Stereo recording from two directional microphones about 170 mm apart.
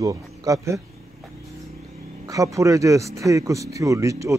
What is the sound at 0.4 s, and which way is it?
Speech, 20° right (ahead or behind).